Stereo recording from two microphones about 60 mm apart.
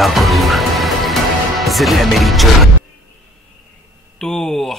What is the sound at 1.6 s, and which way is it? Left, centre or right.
Speech, centre.